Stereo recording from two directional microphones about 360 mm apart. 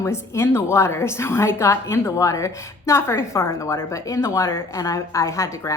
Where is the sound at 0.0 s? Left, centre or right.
Centre.